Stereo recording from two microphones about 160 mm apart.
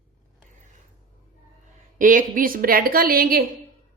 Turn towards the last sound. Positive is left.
turn(degrees=-65)  # may be behind; listen again after turning